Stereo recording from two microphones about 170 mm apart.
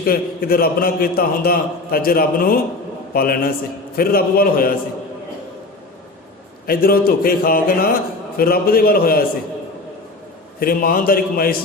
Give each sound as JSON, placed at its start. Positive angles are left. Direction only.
{"t": 0.0, "sound": "a man's voice", "side_deg": 60}
{"t": 6.7, "sound": "a man's voice", "side_deg": 65}
{"t": 10.6, "sound": "a man's voice", "side_deg": 60}